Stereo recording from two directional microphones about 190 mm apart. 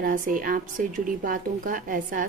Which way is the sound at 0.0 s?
45° right (ahead or behind).